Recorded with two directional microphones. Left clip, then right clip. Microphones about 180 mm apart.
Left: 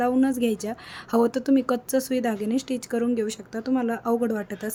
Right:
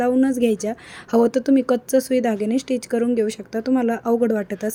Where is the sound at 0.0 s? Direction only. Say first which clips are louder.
Right 4 dB; 10° right (ahead or behind).